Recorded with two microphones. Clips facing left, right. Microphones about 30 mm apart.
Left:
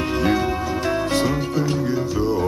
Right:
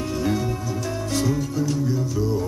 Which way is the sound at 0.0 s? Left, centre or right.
Left.